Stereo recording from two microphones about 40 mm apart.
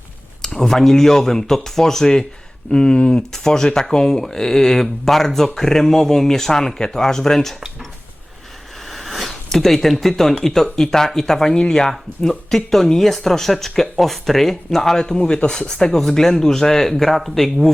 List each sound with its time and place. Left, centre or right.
0.4 s speech: centre
3.3 s speech: centre
8.8 s speech: centre